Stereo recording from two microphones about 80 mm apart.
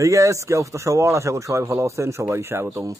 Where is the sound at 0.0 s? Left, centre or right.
Right.